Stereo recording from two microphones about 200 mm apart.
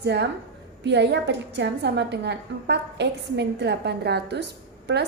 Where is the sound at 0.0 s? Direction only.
55° right (ahead or behind).